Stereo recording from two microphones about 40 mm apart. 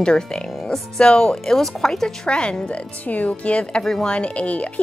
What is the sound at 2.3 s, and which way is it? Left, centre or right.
Speech, left.